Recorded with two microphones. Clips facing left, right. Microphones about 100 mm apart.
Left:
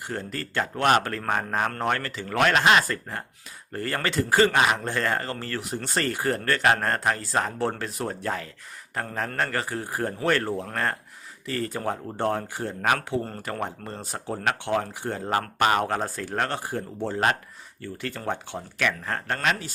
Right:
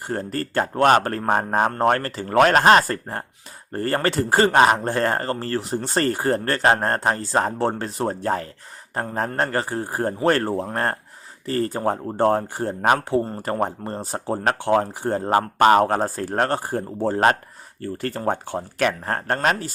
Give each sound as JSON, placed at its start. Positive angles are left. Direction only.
{"t": 0.1, "sound": "speech", "side_deg": -40}